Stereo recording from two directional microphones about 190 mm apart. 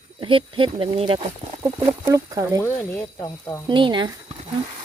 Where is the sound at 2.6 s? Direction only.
10° left (ahead or behind).